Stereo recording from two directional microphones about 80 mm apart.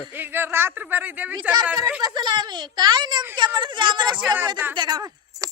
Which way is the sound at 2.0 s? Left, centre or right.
Right.